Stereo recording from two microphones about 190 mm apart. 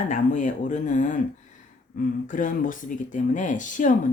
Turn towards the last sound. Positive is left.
turn(degrees=40)  # may be behind; listen again after turning